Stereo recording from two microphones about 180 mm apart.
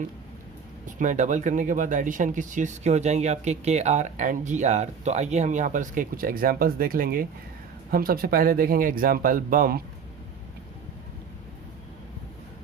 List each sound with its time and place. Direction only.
0.9 s speech: 45° right (ahead or behind)